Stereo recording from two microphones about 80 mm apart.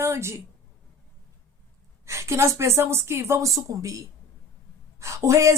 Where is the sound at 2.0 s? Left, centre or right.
Right.